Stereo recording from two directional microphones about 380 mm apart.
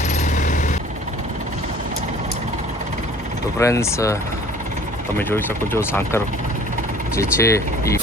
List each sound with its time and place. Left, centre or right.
0.1 s vehicle: centre
3.6 s speech: centre